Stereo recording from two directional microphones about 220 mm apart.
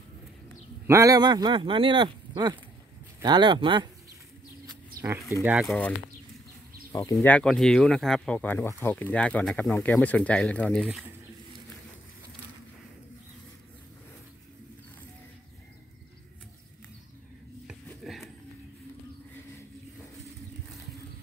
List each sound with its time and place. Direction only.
0.8 s speech: 15° right (ahead or behind)
5.4 s speech: 5° right (ahead or behind)
7.2 s speech: 5° left (ahead or behind)
10.8 s speech: 5° right (ahead or behind)
17.8 s a sound: centre (ahead or behind)